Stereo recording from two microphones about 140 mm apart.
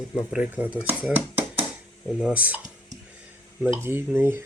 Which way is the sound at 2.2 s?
10° right (ahead or behind).